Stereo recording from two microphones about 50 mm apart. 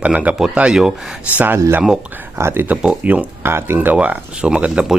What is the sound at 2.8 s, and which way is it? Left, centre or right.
Speech, right.